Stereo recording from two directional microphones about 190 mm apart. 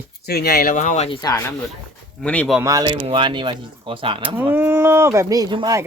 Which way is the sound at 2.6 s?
20° right (ahead or behind).